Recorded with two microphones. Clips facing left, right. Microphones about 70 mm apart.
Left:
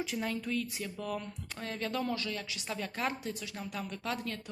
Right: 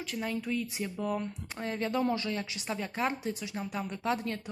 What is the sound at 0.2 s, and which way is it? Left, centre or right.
Speech, centre.